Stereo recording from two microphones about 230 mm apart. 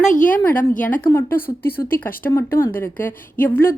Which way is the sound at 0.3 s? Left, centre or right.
Centre.